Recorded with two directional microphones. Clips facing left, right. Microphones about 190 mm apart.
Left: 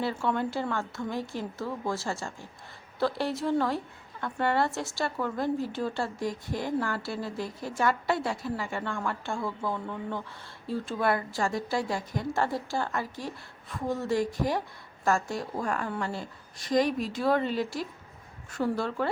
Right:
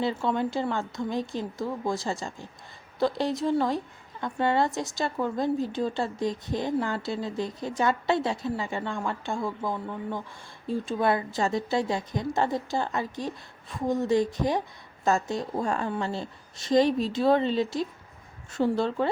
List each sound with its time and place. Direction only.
0.0 s a woman's voice: 20° right (ahead or behind)